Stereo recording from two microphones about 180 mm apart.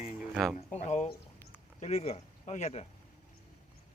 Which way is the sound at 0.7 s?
40° left (ahead or behind).